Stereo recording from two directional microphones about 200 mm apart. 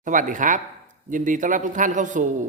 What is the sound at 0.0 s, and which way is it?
A man's voice, 40° right (ahead or behind).